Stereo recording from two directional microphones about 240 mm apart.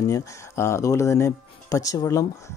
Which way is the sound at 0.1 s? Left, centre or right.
Centre.